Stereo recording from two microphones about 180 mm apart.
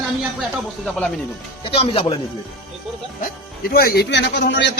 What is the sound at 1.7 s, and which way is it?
Speech, 30° left (ahead or behind).